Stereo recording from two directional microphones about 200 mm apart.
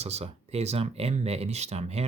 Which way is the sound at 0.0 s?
30° right (ahead or behind).